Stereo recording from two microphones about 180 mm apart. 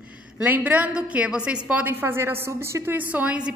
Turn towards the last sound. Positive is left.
turn(degrees=-5)  # may be behind; listen again after turning